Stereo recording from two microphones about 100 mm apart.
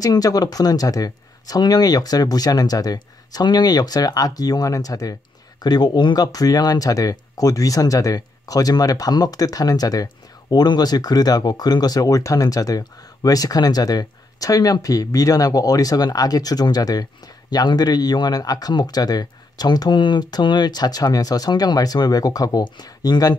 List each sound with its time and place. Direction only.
0.0 s speech: 40° left (ahead or behind)